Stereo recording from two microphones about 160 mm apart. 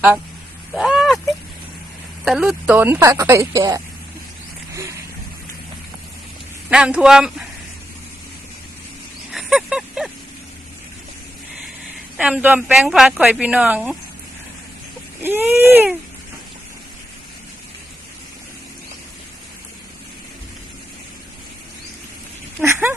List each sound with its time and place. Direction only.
0.7 s a sound: centre (ahead or behind)
2.2 s a woman's voice: centre (ahead or behind); by 3.8 s 20° right (ahead or behind)
4.7 s vehicle: 20° right (ahead or behind)
6.7 s a man's voice: 5° right (ahead or behind)
9.3 s a sound: centre (ahead or behind)
12.1 s a woman's voice: 5° right (ahead or behind)
15.2 s a woman's voice: 15° right (ahead or behind)
22.6 s a woman's voice: 15° right (ahead or behind)